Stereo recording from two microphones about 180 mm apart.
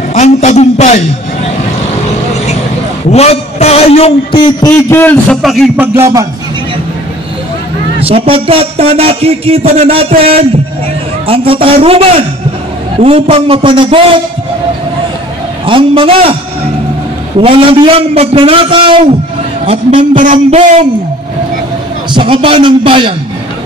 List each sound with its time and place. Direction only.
0.1 s a sound: 40° left (ahead or behind)
3.1 s a man's voice: 35° left (ahead or behind); by 5.9 s centre (ahead or behind)
5.9 s music: 15° right (ahead or behind)
8.0 s a man's voice: 30° right (ahead or behind)
15.6 s a man's voice: 30° right (ahead or behind)
17.4 s a man's voice: 30° right (ahead or behind)
20.2 s a man's voice: 45° right (ahead or behind)
22.1 s a man's voice: 30° right (ahead or behind)